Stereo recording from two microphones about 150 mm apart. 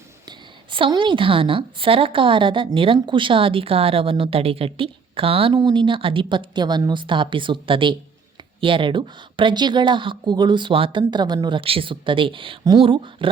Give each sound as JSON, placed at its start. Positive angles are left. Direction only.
{"t": 0.3, "sound": "a woman's voice", "side_deg": -30}